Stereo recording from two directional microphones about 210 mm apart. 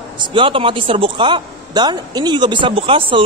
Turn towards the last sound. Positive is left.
turn(degrees=-25)  # may be behind; listen again after turning